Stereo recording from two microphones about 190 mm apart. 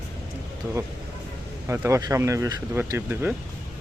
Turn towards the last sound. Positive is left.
turn(degrees=-10)  # may be behind; listen again after turning